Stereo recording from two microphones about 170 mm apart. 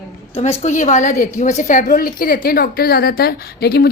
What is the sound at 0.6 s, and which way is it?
A woman's voice, 45° left (ahead or behind).